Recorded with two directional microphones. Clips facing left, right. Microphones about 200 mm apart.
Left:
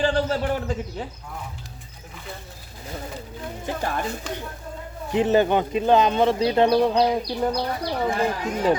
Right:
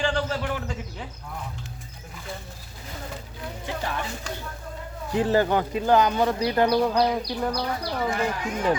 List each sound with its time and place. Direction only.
0.0 s a man's voice: 40° left (ahead or behind)
3.8 s speech: 45° left (ahead or behind)
5.1 s speech: 20° left (ahead or behind)